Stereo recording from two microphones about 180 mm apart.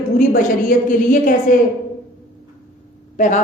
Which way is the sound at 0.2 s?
45° left (ahead or behind).